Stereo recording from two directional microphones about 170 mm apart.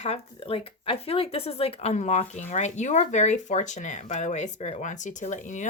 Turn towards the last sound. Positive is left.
turn(degrees=45)  # may be behind; listen again after turning